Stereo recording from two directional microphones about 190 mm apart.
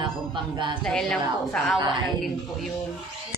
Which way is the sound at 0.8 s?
5° left (ahead or behind).